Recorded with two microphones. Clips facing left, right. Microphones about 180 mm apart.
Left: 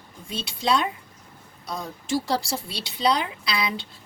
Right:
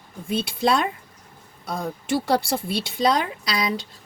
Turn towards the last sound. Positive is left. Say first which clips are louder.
# right 3 dB
turn(degrees=-45)  # may be behind; listen again after turning